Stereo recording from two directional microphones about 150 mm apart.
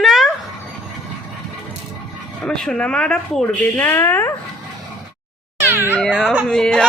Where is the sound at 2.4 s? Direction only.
5° left (ahead or behind).